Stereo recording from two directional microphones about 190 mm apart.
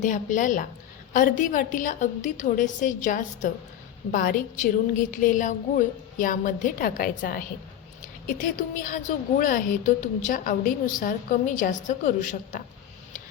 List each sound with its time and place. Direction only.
0.0 s a woman's voice: 45° left (ahead or behind)